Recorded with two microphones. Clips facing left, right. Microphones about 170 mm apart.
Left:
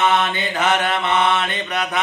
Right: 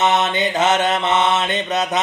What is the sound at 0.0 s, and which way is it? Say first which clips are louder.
Mantra: right 1 dB; 20° right (ahead or behind).